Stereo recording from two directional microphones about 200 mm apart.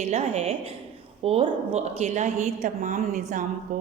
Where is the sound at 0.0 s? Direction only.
30° right (ahead or behind).